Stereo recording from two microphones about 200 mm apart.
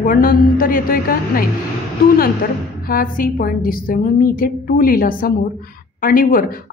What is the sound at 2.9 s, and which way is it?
A woman's voice, 45° left (ahead or behind).